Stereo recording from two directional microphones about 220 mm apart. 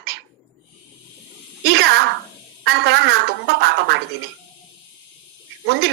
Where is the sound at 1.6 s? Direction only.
50° right (ahead or behind).